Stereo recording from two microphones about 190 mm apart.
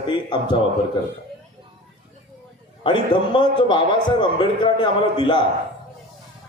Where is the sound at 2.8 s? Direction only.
25° left (ahead or behind).